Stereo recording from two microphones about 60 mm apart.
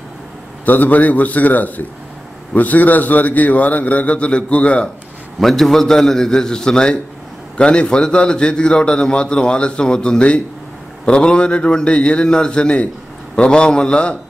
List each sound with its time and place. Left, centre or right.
0.7 s a man's voice: left
5.4 s a man's voice: centre